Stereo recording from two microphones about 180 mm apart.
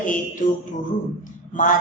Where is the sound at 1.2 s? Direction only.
45° left (ahead or behind).